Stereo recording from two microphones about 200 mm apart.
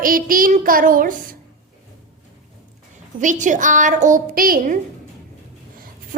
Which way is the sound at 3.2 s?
40° right (ahead or behind).